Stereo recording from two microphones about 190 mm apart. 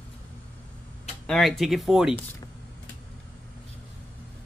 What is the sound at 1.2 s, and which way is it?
Speech, centre (ahead or behind).